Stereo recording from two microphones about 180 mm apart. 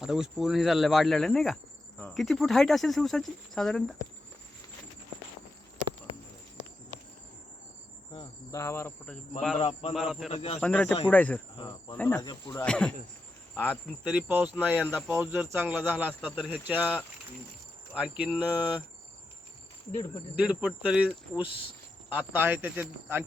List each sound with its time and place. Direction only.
0.0 s speech: centre (ahead or behind)
8.5 s cricket: 15° left (ahead or behind)
9.6 s a man's voice: 35° left (ahead or behind)
9.9 s speech: centre (ahead or behind)
10.2 s a man's voice: 35° left (ahead or behind)
10.6 s cricket: 5° left (ahead or behind)
11.5 s speech: 25° left (ahead or behind)
11.9 s cricket: 10° left (ahead or behind)
12.2 s speech: 25° left (ahead or behind)
12.6 s cricket: 5° left (ahead or behind)
13.5 s speech: 5° left (ahead or behind)
14.3 s speech: 10° right (ahead or behind)
17.9 s speech: 5° right (ahead or behind)
20.3 s speech: 5° right (ahead or behind)